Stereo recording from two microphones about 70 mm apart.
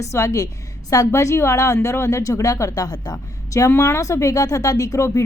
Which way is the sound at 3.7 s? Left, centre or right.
Left.